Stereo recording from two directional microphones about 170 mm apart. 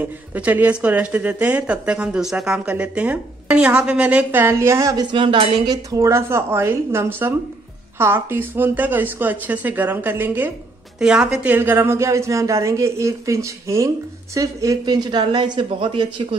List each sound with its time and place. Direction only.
0.0 s speech: 10° right (ahead or behind); by 16.3 s 30° right (ahead or behind)